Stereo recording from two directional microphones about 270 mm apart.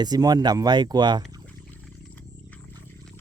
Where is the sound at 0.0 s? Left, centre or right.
Centre.